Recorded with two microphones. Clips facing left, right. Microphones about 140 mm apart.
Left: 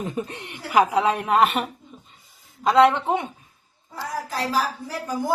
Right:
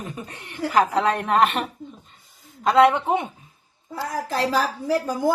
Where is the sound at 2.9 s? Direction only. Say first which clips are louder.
Right 1 dB; 15° right (ahead or behind).